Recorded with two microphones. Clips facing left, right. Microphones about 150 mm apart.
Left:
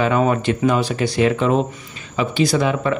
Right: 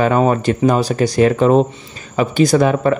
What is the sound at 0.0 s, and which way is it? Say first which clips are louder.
Speech: right 3 dB; 40° right (ahead or behind).